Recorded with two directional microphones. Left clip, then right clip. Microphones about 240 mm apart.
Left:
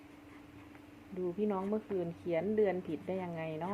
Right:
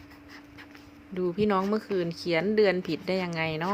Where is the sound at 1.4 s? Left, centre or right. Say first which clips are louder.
Right 10 dB; right.